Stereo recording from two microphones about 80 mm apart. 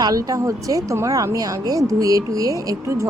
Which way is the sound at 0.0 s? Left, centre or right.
Right.